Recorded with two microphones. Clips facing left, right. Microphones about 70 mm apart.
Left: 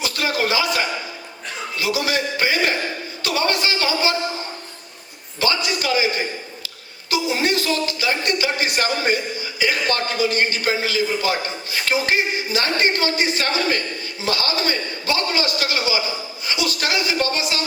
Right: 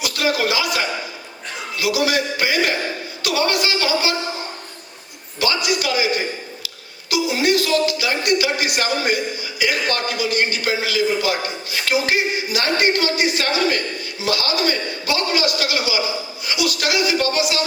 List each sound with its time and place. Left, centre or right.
0.0 s a man's voice: left
5.4 s a man's voice: left